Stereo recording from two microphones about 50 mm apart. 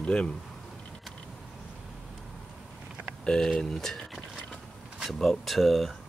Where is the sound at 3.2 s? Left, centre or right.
Centre.